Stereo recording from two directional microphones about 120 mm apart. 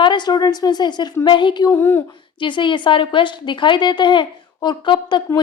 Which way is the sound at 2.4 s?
45° left (ahead or behind).